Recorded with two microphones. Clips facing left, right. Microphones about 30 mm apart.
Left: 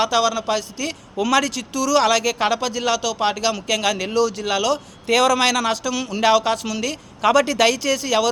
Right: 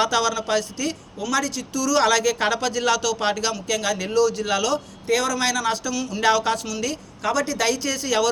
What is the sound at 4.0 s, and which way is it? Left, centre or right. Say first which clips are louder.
Speech: even; left.